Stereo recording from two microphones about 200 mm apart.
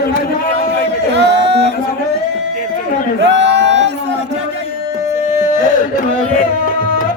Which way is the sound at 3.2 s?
60° right (ahead or behind).